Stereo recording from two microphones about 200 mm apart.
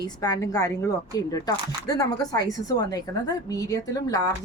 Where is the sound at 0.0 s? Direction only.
15° left (ahead or behind).